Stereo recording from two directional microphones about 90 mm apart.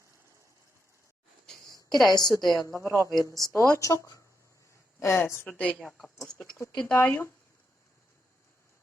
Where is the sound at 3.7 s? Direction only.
35° left (ahead or behind).